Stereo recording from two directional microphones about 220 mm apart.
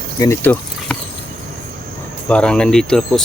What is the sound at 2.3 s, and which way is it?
Speech, 5° left (ahead or behind).